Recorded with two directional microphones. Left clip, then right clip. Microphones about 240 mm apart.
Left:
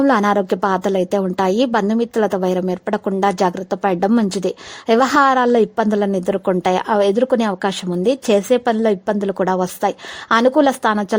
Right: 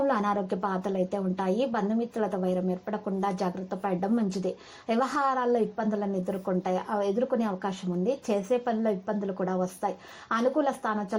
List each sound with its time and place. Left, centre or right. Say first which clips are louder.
0.0 s a woman's voice: left 11 dB; left